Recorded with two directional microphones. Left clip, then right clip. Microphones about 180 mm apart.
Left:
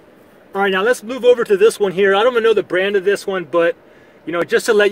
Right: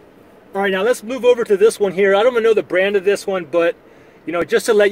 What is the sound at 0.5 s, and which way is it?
Speech, 40° left (ahead or behind).